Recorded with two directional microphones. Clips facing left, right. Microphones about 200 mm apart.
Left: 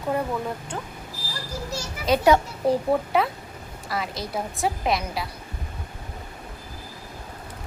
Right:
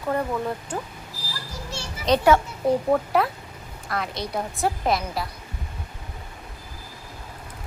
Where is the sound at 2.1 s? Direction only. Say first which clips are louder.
Even; 5° left (ahead or behind).